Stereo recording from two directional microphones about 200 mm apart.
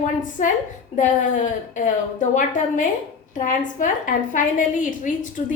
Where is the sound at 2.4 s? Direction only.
40° left (ahead or behind).